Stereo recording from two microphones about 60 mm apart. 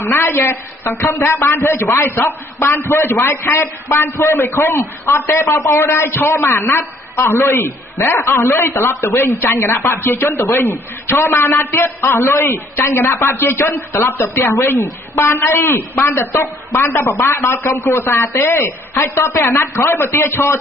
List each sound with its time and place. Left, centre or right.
0.0 s a woman's voice: left